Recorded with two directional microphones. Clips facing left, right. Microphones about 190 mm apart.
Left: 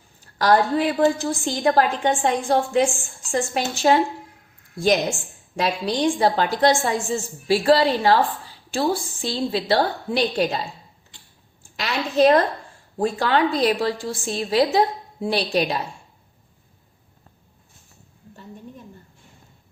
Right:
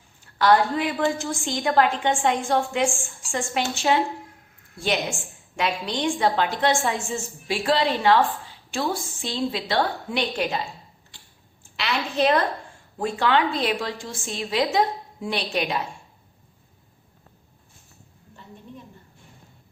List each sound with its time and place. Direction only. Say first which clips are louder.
0.3 s a woman's voice: left 1 dB; 40° left (ahead or behind)
11.8 s a woman's voice: left 5 dB; 45° left (ahead or behind)